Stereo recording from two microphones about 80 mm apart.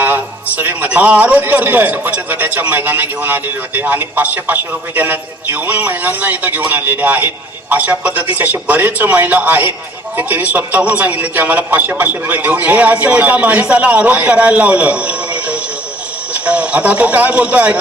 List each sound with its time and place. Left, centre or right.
0.0 s a man's voice: right